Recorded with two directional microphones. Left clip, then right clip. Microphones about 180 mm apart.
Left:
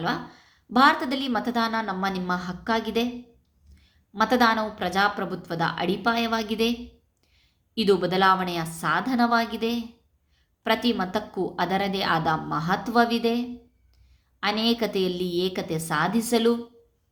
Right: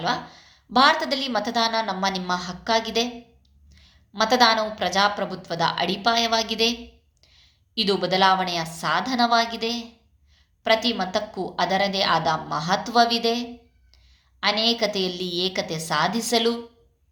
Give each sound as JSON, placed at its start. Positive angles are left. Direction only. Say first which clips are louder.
{"t": 0.0, "sound": "a woman's voice", "louder": "right 3 dB", "side_deg": 30}